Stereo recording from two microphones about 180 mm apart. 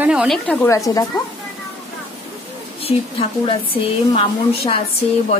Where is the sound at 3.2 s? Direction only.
30° left (ahead or behind).